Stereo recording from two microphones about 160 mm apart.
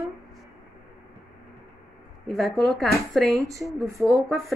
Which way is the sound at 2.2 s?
Centre (ahead or behind).